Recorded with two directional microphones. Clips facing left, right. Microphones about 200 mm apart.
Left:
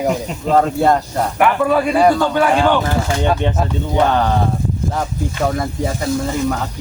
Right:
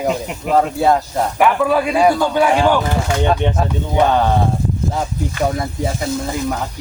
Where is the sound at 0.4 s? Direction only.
5° right (ahead or behind).